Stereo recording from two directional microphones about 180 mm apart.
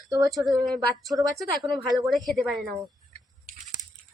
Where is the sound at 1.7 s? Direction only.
25° right (ahead or behind).